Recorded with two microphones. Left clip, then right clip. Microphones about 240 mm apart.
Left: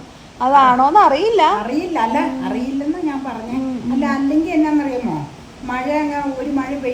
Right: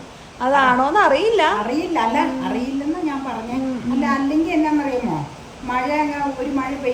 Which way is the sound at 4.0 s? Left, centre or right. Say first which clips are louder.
Left 1 dB; centre.